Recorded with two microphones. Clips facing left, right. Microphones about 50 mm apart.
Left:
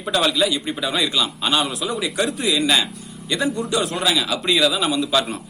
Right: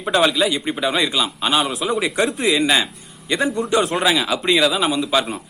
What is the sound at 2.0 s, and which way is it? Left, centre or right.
A man's voice, right.